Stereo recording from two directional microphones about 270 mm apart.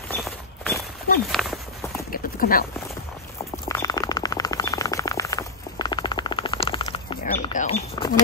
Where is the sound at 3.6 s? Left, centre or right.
Centre.